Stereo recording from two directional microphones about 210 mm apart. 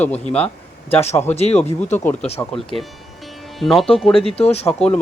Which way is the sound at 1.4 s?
30° left (ahead or behind).